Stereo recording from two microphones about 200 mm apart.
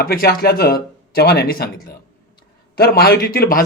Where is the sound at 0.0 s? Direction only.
50° left (ahead or behind).